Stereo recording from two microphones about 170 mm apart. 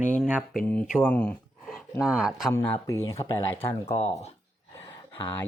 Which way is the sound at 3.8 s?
40° left (ahead or behind).